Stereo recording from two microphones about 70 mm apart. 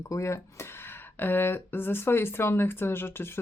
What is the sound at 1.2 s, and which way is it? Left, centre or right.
Speech, left.